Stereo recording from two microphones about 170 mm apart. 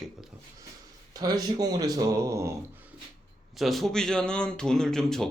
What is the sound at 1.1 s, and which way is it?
Speech, 20° right (ahead or behind).